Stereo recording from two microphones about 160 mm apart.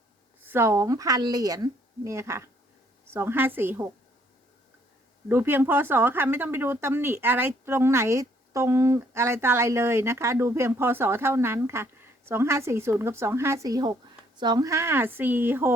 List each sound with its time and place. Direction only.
0.4 s speech: 15° right (ahead or behind)
5.3 s speech: 15° right (ahead or behind)